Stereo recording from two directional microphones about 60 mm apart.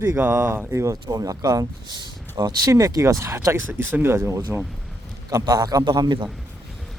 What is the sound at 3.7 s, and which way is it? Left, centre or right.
Speech, right.